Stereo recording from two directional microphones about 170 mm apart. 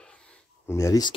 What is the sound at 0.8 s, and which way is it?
Speech, 20° left (ahead or behind).